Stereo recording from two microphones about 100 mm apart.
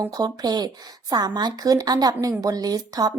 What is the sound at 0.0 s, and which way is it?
Speech, 40° right (ahead or behind).